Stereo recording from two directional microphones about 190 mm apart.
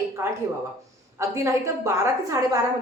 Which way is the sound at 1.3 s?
15° right (ahead or behind).